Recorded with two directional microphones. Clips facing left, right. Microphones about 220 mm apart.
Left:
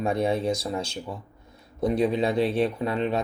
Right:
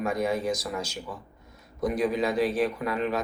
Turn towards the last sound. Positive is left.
turn(degrees=30)  # may be behind; listen again after turning